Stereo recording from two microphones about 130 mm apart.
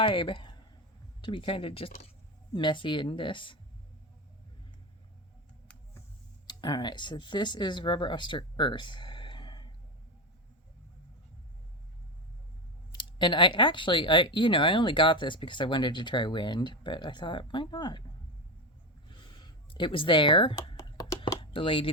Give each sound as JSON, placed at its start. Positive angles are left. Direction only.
{"t": 0.0, "sound": "speech", "side_deg": 40}
{"t": 6.5, "sound": "speech", "side_deg": 35}
{"t": 12.9, "sound": "speech", "side_deg": 40}
{"t": 19.0, "sound": "a sound", "side_deg": 35}
{"t": 20.7, "sound": "a sound", "side_deg": 30}
{"t": 21.3, "sound": "computer keyboard", "side_deg": 45}